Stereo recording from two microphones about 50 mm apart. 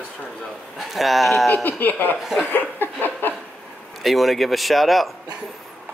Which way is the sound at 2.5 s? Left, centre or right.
Left.